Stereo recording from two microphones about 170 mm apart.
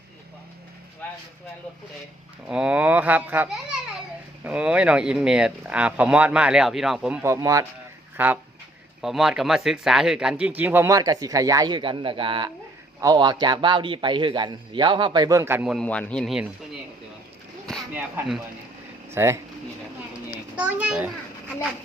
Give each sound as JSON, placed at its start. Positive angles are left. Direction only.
{"t": 2.5, "sound": "a man's voice", "side_deg": -5}
{"t": 15.6, "sound": "speech", "side_deg": 0}
{"t": 19.1, "sound": "speech", "side_deg": -15}
{"t": 20.6, "sound": "speech", "side_deg": -10}